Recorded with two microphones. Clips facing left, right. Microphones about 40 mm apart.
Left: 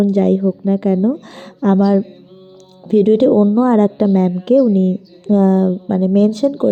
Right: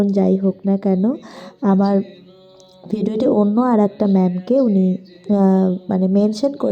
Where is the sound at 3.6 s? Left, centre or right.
Left.